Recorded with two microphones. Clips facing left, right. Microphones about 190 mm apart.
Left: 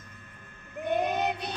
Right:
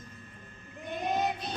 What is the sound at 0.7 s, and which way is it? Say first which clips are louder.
Child singing: left 5 dB; 65° left (ahead or behind).